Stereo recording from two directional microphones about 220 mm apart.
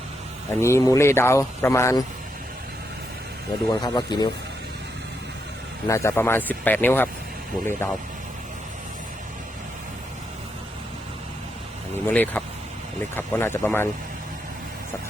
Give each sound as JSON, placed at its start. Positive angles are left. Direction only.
{"t": 0.6, "sound": "speech", "side_deg": 10}
{"t": 3.7, "sound": "speech", "side_deg": 20}
{"t": 5.9, "sound": "speech", "side_deg": 15}
{"t": 12.0, "sound": "speech", "side_deg": 10}